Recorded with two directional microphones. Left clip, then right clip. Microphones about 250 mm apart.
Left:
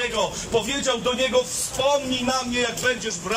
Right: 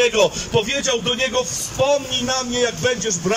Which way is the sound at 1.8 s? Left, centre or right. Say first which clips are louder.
Right 3 dB; right.